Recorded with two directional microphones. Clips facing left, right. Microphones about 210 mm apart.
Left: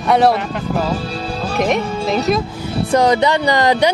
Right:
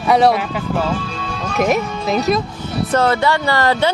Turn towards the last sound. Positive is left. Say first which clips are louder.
# left 2 dB
turn(degrees=15)  # may be behind; listen again after turning